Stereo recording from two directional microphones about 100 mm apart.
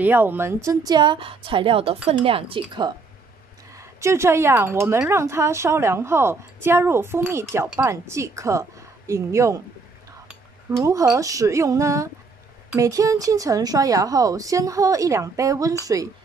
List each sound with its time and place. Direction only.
0.0 s a woman's voice: 20° right (ahead or behind)
0.9 s a woman's voice: 55° right (ahead or behind)
3.7 s a woman's voice: 30° right (ahead or behind)
10.8 s speech: 35° right (ahead or behind)